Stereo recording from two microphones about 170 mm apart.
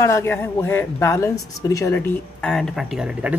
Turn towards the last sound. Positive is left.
turn(degrees=-5)  # may be behind; listen again after turning